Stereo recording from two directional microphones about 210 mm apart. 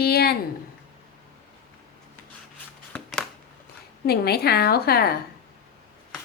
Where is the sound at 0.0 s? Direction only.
50° left (ahead or behind).